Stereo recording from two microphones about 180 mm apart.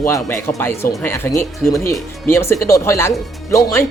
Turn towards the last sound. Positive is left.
turn(degrees=15)  # may be behind; listen again after turning